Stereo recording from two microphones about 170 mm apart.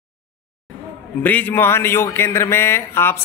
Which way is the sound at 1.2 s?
10° left (ahead or behind).